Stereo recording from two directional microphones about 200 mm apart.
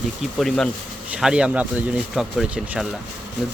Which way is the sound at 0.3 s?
Centre (ahead or behind).